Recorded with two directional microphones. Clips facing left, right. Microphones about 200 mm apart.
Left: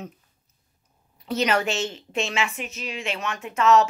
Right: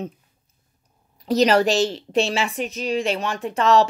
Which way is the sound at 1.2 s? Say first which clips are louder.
Right 7 dB; 35° right (ahead or behind).